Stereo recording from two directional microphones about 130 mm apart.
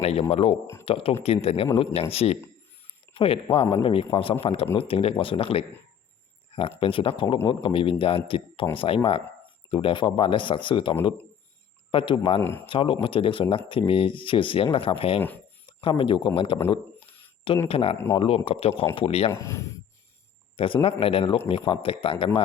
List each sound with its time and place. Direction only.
0.0 s speech: 50° left (ahead or behind)
12.4 s speech: 15° left (ahead or behind)
12.6 s speech: 40° left (ahead or behind)
17.7 s speech: 45° left (ahead or behind)
17.9 s speech: 20° left (ahead or behind)
18.2 s speech: 45° left (ahead or behind)
19.3 s speech: 20° left (ahead or behind)
20.8 s speech: 45° left (ahead or behind)